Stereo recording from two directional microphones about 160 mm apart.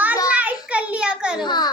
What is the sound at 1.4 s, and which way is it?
Child singing, 25° left (ahead or behind).